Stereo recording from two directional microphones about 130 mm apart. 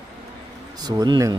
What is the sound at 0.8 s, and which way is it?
Speech, 30° right (ahead or behind).